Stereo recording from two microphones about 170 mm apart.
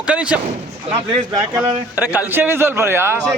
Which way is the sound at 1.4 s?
15° right (ahead or behind).